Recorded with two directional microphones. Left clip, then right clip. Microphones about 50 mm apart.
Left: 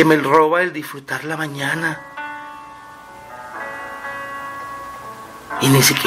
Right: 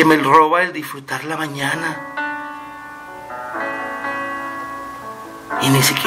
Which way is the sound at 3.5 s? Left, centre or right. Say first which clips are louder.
Right 5 dB; right.